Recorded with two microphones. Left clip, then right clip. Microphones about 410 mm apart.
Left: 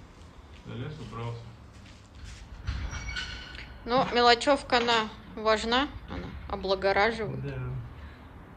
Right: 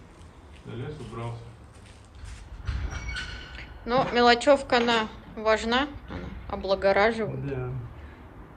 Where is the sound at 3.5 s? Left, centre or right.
Centre.